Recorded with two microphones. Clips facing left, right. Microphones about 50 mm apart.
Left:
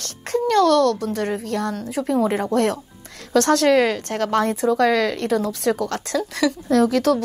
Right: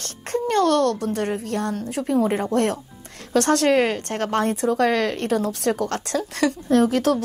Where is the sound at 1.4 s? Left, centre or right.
Left.